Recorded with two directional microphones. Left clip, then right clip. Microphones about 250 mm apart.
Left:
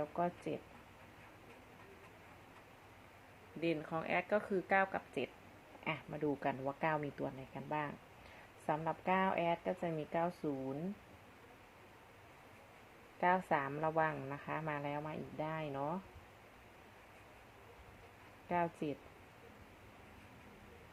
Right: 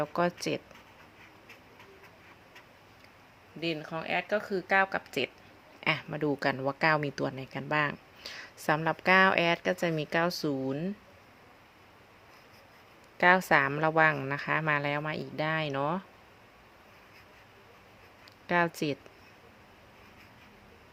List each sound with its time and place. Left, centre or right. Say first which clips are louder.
0.0 s a woman's voice: right 9 dB; right
3.6 s a woman's voice: right 4 dB; centre; by 10.8 s right
13.1 s a woman's voice: right 11 dB; right
18.4 s a woman's voice: right 9 dB; right